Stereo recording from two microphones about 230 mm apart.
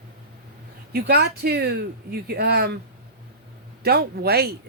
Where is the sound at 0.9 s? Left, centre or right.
Right.